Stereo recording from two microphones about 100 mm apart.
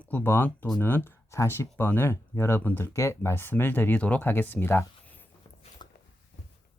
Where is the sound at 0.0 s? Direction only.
20° left (ahead or behind).